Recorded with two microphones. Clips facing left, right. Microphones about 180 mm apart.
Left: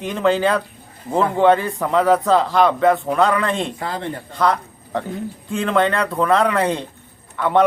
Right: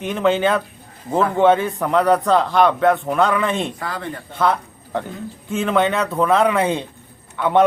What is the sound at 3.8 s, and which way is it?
Speech, 25° left (ahead or behind).